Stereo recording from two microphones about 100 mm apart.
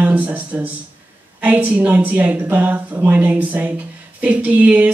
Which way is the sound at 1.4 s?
15° right (ahead or behind).